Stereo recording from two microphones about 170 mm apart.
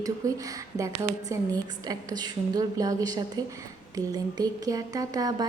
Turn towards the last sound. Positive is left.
turn(degrees=-20)  # may be behind; listen again after turning